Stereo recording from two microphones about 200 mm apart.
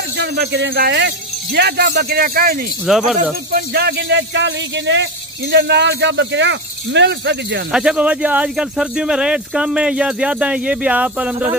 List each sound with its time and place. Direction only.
0.2 s speech: 60° right (ahead or behind)
2.9 s speech: centre (ahead or behind)
3.7 s speech: 55° right (ahead or behind)
7.7 s speech: 5° right (ahead or behind)